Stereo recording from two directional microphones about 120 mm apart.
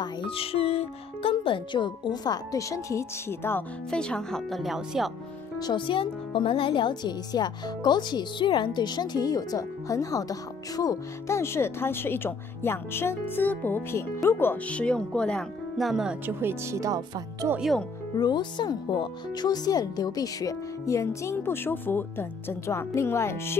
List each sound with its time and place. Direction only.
0.0 s speech: 45° left (ahead or behind); by 3.6 s 20° left (ahead or behind)
3.9 s speech: 5° left (ahead or behind)
5.6 s speech: 40° left (ahead or behind); by 15.9 s 5° left (ahead or behind)
15.9 s speech: 5° right (ahead or behind)
16.3 s speech: 20° right (ahead or behind)
17.6 s speech: centre (ahead or behind)
18.1 s speech: 35° left (ahead or behind)